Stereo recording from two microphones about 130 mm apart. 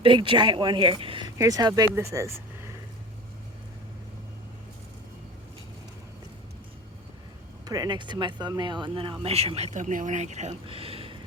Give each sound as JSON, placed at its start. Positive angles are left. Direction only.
{"t": 0.0, "sound": "speech", "side_deg": -40}
{"t": 1.4, "sound": "speech", "side_deg": -25}
{"t": 7.6, "sound": "speech", "side_deg": -30}
{"t": 9.2, "sound": "speech", "side_deg": -50}